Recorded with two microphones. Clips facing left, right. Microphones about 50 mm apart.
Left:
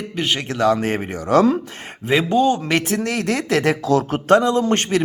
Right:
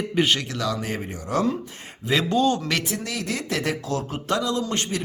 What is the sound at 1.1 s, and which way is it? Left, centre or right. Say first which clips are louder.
Speech: left 9 dB; left.